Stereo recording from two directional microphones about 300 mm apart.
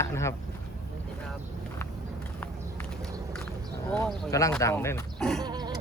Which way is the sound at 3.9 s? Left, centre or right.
Centre.